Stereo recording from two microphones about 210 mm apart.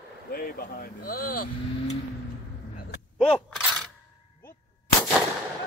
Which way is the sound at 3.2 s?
5° left (ahead or behind).